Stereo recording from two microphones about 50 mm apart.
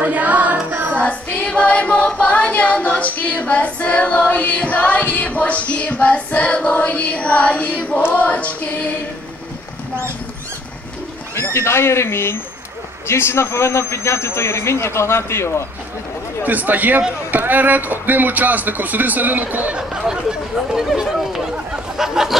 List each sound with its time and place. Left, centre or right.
0.0 s music: right
1.0 s choir: left
8.1 s female singing: left
11.3 s a man's voice: left
16.4 s speech: right
19.9 s speech: centre
21.9 s a sound: centre